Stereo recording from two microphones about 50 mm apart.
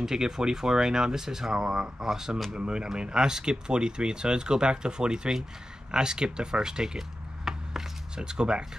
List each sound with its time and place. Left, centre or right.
0.0 s speech: centre